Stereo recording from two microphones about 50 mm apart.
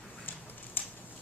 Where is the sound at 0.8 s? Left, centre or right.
Left.